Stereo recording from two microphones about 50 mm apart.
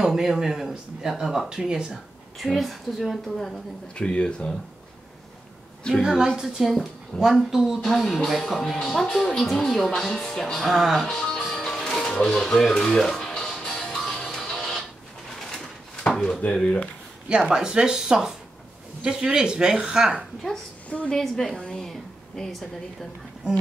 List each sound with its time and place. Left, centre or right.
0.0 s speech: centre
2.3 s speech: centre
3.9 s speech: centre
5.9 s speech: left
6.4 s speech: centre
10.8 s speech: centre
11.1 s speech: centre
11.4 s music: centre
16.3 s speech: centre
17.4 s speech: centre
21.2 s speech: centre
21.5 s speech: centre
21.8 s a sound: centre